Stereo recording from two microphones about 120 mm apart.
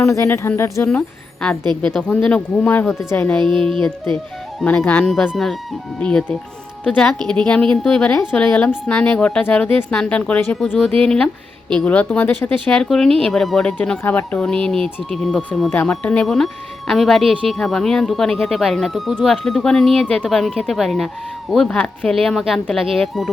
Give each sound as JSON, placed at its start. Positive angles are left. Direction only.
{"t": 0.0, "sound": "speech", "side_deg": 25}
{"t": 0.9, "sound": "speech", "side_deg": 5}
{"t": 2.8, "sound": "speech", "side_deg": -5}
{"t": 3.1, "sound": "speech", "side_deg": 15}
{"t": 3.3, "sound": "speech", "side_deg": 5}